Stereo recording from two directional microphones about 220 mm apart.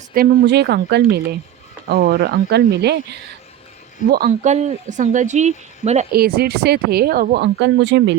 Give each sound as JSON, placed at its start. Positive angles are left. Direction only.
{"t": 0.1, "sound": "speech", "side_deg": -45}
{"t": 4.1, "sound": "speech", "side_deg": -40}
{"t": 6.1, "sound": "speech", "side_deg": -45}